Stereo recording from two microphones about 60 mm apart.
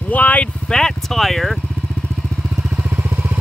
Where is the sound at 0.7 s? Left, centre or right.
Centre.